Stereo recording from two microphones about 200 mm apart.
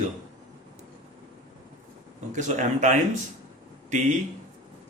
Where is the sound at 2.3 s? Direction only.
35° right (ahead or behind).